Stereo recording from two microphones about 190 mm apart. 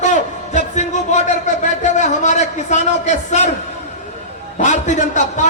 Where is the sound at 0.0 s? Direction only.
40° left (ahead or behind).